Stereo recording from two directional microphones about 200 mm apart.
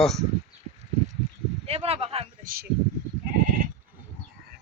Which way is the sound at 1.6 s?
30° right (ahead or behind).